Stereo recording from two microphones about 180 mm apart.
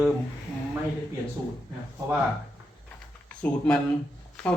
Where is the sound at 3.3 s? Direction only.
5° left (ahead or behind).